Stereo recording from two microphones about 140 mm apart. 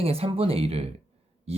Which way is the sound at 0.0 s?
45° right (ahead or behind).